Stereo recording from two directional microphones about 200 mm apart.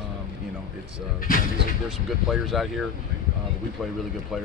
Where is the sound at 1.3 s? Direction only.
45° left (ahead or behind).